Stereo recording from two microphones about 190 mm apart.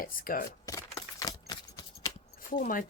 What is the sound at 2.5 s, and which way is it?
Speech, 45° left (ahead or behind).